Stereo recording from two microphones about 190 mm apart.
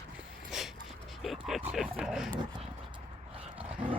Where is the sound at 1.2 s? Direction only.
Centre (ahead or behind).